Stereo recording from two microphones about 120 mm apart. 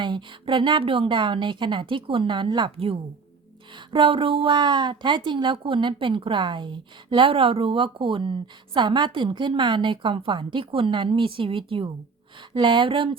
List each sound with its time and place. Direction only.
0.0 s a woman's voice: 40° right (ahead or behind)